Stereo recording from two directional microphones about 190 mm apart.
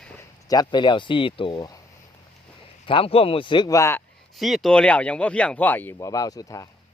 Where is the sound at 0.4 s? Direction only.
20° left (ahead or behind).